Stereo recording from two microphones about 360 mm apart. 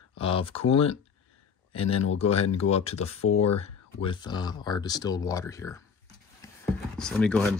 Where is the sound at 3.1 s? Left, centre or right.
Left.